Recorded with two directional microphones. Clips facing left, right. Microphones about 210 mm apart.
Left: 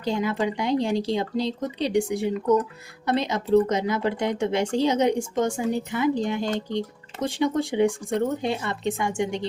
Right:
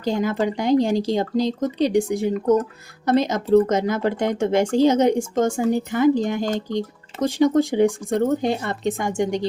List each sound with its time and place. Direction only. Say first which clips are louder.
0.0 s speech: right 3 dB; 45° right (ahead or behind)